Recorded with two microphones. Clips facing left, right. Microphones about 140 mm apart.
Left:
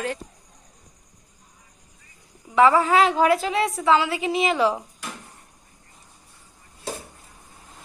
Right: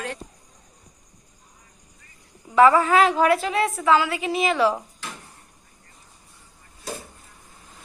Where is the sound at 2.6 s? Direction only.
20° left (ahead or behind).